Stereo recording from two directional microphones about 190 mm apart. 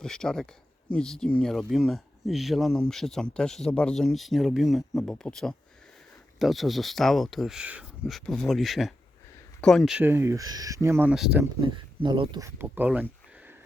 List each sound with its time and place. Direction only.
0.0 s speech: 5° left (ahead or behind)
11.6 s speech: 25° right (ahead or behind); by 13.1 s 10° right (ahead or behind)